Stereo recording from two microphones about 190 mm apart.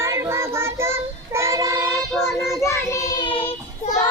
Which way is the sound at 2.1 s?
15° left (ahead or behind).